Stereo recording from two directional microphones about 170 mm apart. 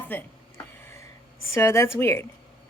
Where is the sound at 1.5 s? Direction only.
15° left (ahead or behind).